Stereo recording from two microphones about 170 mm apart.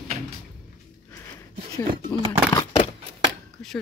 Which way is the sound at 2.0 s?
20° left (ahead or behind).